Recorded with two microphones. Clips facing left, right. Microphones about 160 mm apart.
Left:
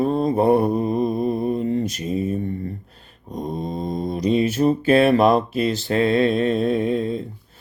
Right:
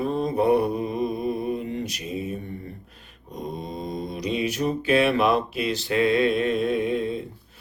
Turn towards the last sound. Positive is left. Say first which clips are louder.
# left 3 dB
turn(degrees=35)  # may be behind; listen again after turning